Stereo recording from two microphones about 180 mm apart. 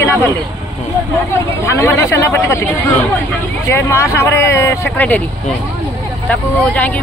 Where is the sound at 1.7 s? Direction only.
15° left (ahead or behind).